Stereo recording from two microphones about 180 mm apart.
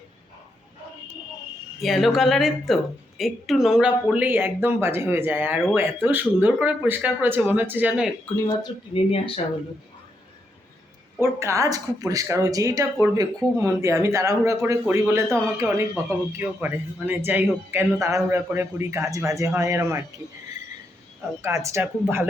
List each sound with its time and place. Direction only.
1.8 s speech: centre (ahead or behind)
8.4 s speech: 25° left (ahead or behind)
11.2 s speech: 15° right (ahead or behind)
21.4 s speech: 15° right (ahead or behind)